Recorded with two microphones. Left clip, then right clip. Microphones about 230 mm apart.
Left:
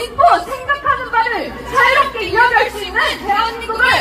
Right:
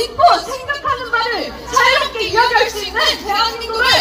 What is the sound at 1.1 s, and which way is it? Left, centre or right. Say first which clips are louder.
A woman's voice: left 2 dB; right.